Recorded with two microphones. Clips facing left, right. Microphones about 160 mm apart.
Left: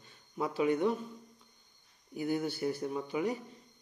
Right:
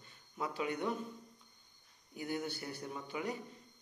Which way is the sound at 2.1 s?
35° left (ahead or behind).